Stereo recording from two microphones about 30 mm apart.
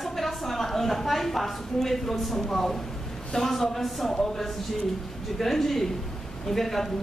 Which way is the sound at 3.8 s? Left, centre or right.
Centre.